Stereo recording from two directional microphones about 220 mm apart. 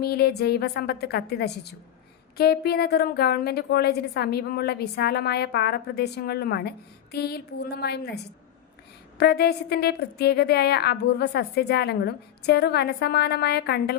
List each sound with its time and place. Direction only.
0.0 s a woman's voice: 45° left (ahead or behind)